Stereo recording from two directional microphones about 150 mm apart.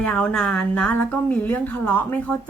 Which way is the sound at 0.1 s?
5° left (ahead or behind).